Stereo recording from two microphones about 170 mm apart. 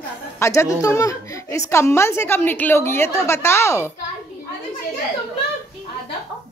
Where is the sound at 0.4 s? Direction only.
15° left (ahead or behind).